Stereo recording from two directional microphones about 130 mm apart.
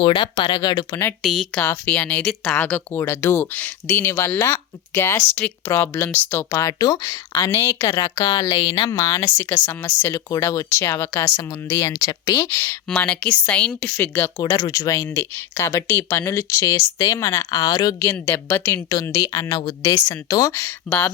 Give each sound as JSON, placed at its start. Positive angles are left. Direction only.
{"t": 0.0, "sound": "speech", "side_deg": 40}
{"t": 1.2, "sound": "speech", "side_deg": -5}
{"t": 1.6, "sound": "speech", "side_deg": 15}
{"t": 9.1, "sound": "speech", "side_deg": 20}
{"t": 12.9, "sound": "speech", "side_deg": 5}